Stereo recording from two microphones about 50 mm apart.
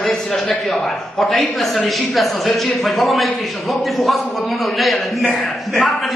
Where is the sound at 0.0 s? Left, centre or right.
Centre.